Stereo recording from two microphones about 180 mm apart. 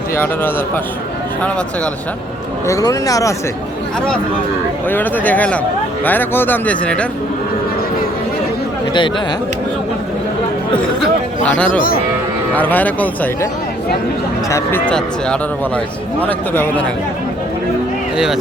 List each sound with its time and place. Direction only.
1.4 s speech: 5° left (ahead or behind)
2.6 s speech: 20° left (ahead or behind)
4.9 s speech: 10° left (ahead or behind)
8.9 s speech: 25° left (ahead or behind)
11.4 s speech: 5° left (ahead or behind)
14.5 s speech: 10° left (ahead or behind)